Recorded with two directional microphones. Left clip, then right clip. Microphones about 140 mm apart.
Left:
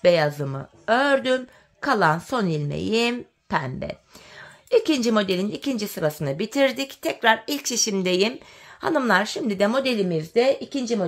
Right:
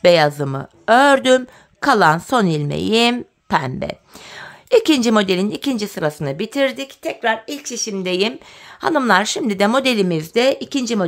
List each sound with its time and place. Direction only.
0.0 s speech: 30° right (ahead or behind)
1.9 s a woman's voice: 30° right (ahead or behind); by 6.9 s 5° right (ahead or behind)
7.0 s speech: 15° left (ahead or behind)
7.9 s speech: 5° left (ahead or behind)
8.8 s speech: 20° right (ahead or behind); by 11.1 s 50° right (ahead or behind)